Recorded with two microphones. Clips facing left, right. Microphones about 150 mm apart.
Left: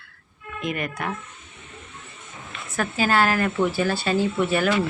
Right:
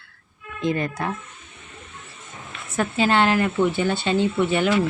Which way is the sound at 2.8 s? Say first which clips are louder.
Right 2 dB; 25° right (ahead or behind).